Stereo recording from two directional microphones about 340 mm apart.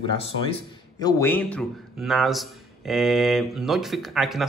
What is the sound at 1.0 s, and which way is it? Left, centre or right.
A man's voice, centre.